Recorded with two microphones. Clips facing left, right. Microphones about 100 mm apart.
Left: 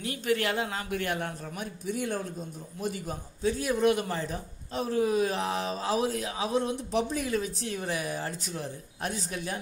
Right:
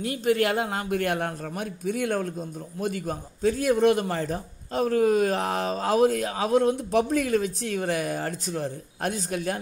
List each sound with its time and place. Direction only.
0.0 s a man's voice: 40° right (ahead or behind)